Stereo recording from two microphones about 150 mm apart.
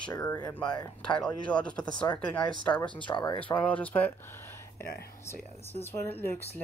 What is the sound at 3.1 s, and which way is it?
Speech, 30° left (ahead or behind).